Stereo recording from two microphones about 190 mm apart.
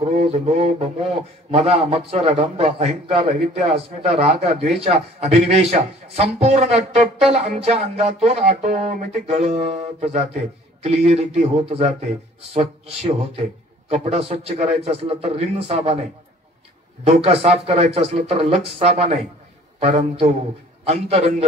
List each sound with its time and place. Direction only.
0.1 s a sound: 30° right (ahead or behind)
1.5 s a man's voice: 30° right (ahead or behind)
17.0 s a man's voice: 35° right (ahead or behind)